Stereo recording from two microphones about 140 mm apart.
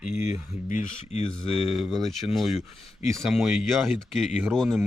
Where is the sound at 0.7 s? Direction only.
65° left (ahead or behind).